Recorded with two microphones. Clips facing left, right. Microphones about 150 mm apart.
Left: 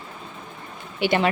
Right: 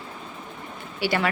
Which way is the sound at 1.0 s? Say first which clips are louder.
Left 4 dB; 20° left (ahead or behind).